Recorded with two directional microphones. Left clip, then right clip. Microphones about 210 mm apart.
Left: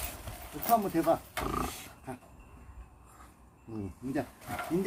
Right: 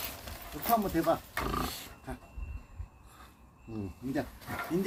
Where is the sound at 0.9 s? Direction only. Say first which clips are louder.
Left 1 dB; 10° right (ahead or behind).